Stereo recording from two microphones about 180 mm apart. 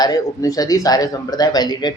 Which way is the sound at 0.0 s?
20° left (ahead or behind).